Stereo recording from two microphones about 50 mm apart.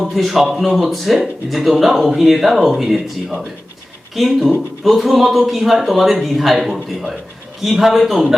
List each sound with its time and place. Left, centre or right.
0.0 s a man's voice: centre